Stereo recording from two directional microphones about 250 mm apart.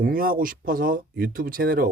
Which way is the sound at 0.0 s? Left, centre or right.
Right.